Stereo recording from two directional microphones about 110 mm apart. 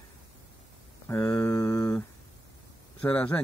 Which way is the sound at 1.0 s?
30° left (ahead or behind).